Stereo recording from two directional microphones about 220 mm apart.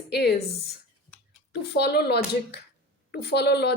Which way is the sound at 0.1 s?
50° left (ahead or behind).